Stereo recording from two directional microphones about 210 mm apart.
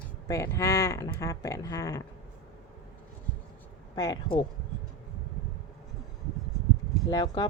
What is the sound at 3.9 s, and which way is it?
Speech, 20° left (ahead or behind).